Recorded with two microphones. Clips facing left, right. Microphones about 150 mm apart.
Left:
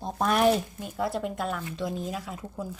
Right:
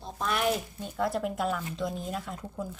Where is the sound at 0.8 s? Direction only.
5° left (ahead or behind).